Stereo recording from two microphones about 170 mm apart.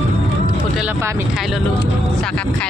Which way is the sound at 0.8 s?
15° right (ahead or behind).